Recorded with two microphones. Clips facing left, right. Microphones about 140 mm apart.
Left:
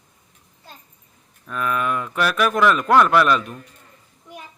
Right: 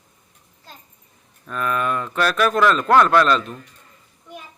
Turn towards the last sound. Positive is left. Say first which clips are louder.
# right 1 dB
turn(degrees=10)  # may be behind; listen again after turning